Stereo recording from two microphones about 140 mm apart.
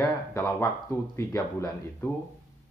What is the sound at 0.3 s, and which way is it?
Speech, 20° left (ahead or behind).